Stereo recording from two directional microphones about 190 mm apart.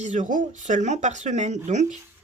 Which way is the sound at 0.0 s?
40° right (ahead or behind).